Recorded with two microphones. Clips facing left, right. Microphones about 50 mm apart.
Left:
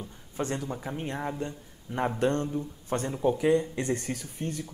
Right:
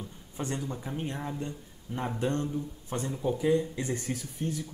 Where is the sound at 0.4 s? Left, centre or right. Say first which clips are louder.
Left 3 dB; left.